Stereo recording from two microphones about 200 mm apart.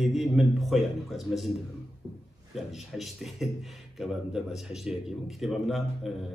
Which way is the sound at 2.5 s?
Centre (ahead or behind).